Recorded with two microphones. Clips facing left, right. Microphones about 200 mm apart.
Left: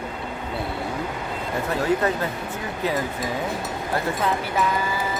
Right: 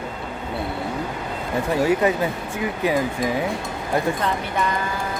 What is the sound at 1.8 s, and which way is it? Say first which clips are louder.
Speech: right 2 dB; 15° right (ahead or behind).